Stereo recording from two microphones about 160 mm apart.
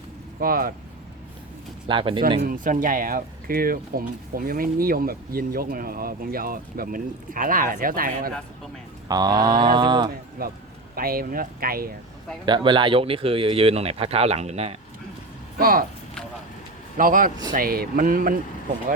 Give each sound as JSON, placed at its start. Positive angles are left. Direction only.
{"t": 0.3, "sound": "speech", "side_deg": -65}
{"t": 1.9, "sound": "speech", "side_deg": -30}
{"t": 2.4, "sound": "speech", "side_deg": -60}
{"t": 9.0, "sound": "speech", "side_deg": -25}
{"t": 10.4, "sound": "speech", "side_deg": -65}
{"t": 12.5, "sound": "speech", "side_deg": -30}
{"t": 15.5, "sound": "speech", "side_deg": -65}
{"t": 17.0, "sound": "speech", "side_deg": -60}